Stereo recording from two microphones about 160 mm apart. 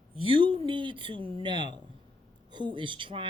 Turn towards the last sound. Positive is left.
turn(degrees=-30)  # may be behind; listen again after turning